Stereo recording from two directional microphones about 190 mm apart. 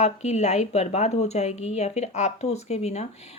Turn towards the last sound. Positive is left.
turn(degrees=35)  # may be behind; listen again after turning